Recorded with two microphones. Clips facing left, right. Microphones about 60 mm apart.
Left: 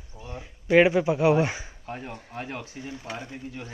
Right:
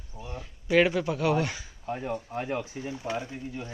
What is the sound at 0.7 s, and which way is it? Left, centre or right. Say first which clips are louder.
Speech: left 4 dB; centre.